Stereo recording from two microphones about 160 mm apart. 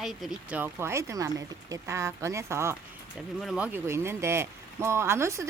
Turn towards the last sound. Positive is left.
turn(degrees=-15)  # may be behind; listen again after turning